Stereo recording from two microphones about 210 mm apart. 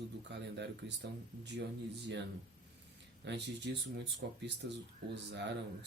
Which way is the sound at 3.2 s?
55° right (ahead or behind).